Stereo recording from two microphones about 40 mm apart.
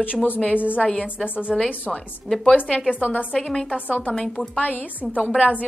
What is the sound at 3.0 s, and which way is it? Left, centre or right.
Speech, left.